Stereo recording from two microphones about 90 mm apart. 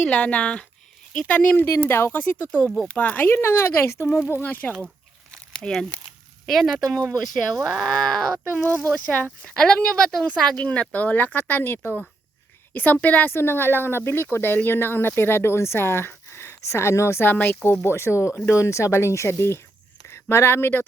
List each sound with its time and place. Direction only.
0.0 s speech: 15° left (ahead or behind)
5.3 s crumpling: 5° left (ahead or behind)
6.4 s speech: centre (ahead or behind)
7.8 s speech: 5° left (ahead or behind)
8.6 s speech: 25° right (ahead or behind)
9.4 s speech: 10° left (ahead or behind)